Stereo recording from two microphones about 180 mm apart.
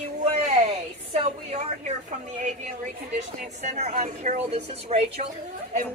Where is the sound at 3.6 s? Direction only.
40° right (ahead or behind).